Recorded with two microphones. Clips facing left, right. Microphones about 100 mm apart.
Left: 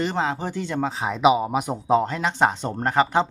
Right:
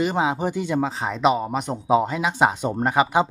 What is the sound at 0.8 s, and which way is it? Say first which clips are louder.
Speech: left 5 dB; centre (ahead or behind).